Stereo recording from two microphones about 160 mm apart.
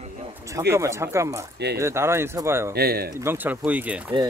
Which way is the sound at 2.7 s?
75° right (ahead or behind).